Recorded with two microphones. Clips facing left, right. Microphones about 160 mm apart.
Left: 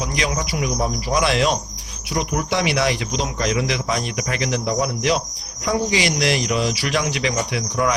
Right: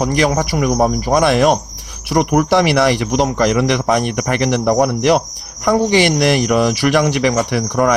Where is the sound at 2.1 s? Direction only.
65° right (ahead or behind).